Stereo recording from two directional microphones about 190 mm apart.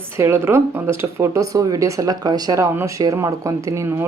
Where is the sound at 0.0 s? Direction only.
15° right (ahead or behind).